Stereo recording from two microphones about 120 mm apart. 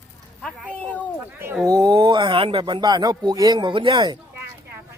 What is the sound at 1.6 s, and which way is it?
Speech, 30° right (ahead or behind).